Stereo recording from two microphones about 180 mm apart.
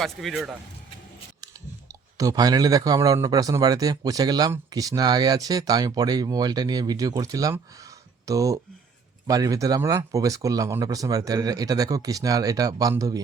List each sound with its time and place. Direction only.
0.0 s speech: centre (ahead or behind)
2.1 s a man's voice: 20° right (ahead or behind)